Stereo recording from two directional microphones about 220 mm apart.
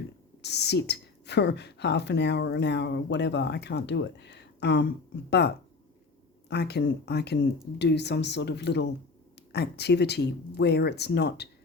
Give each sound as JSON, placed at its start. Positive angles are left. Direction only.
{"t": 0.4, "sound": "speech", "side_deg": 50}
{"t": 6.5, "sound": "speech", "side_deg": 50}